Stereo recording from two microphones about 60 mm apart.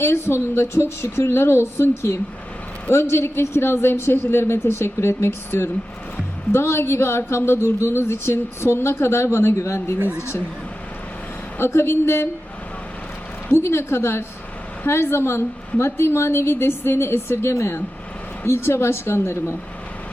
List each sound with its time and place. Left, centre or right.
0.0 s speech: left
11.5 s speech: left
13.5 s speech: left